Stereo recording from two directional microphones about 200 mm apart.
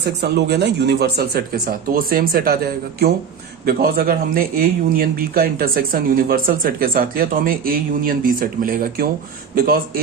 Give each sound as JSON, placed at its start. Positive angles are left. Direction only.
{"t": 0.0, "sound": "a man's voice", "side_deg": -55}
{"t": 3.7, "sound": "a man's voice", "side_deg": -50}